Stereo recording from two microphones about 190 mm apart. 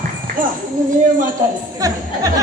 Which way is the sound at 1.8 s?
20° right (ahead or behind).